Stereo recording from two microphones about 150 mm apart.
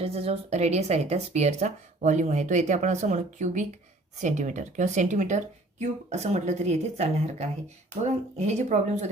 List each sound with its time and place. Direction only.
0.0 s speech: 40° right (ahead or behind)